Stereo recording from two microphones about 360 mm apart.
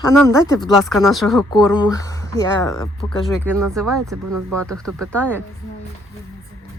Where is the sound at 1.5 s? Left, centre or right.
Centre.